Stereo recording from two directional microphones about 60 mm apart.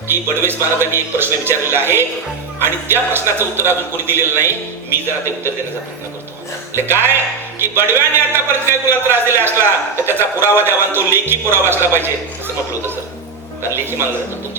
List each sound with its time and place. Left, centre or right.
0.1 s a man's voice: right
6.7 s a man's voice: right